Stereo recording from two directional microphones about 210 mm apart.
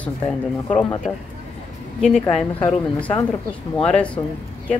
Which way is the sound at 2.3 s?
5° left (ahead or behind).